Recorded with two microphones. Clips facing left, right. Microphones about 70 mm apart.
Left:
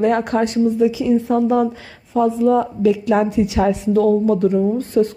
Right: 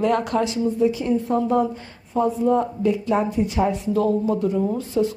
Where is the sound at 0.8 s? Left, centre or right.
Left.